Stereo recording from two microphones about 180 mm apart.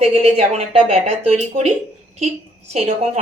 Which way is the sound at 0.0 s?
35° right (ahead or behind).